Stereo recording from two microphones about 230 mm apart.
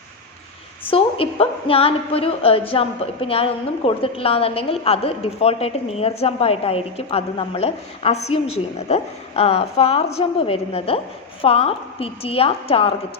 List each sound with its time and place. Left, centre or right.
0.9 s speech: left